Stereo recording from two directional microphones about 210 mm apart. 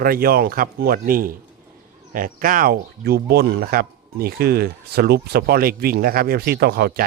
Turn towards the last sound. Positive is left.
turn(degrees=-50)  # may be behind; listen again after turning